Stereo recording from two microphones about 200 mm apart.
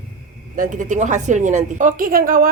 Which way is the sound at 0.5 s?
40° right (ahead or behind).